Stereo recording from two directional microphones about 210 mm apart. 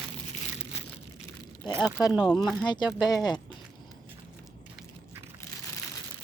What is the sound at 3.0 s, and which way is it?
Speech, 20° left (ahead or behind).